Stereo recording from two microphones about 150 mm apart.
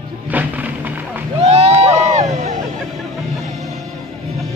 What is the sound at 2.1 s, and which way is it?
Music, 50° right (ahead or behind).